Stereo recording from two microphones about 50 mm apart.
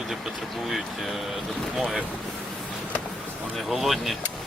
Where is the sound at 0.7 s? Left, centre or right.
Centre.